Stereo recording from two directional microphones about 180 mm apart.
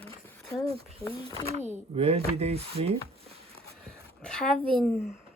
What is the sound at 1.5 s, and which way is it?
Speech, 40° right (ahead or behind).